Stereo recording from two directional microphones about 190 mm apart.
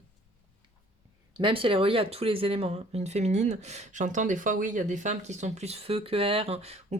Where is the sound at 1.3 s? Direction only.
25° right (ahead or behind).